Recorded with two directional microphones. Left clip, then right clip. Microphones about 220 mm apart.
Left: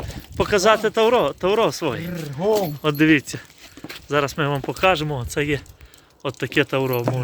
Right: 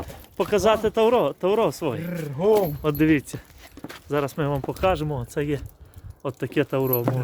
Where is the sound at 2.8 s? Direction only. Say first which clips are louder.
Left 4 dB; centre (ahead or behind).